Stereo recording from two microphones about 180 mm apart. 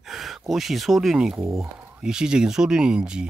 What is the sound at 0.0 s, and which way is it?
Speech, centre (ahead or behind).